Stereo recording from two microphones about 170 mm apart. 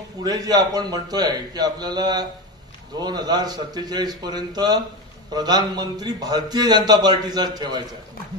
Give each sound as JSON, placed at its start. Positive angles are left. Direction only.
{"t": 0.2, "sound": "a man's voice", "side_deg": -20}